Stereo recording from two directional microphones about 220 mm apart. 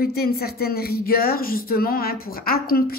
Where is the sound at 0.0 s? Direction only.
45° left (ahead or behind).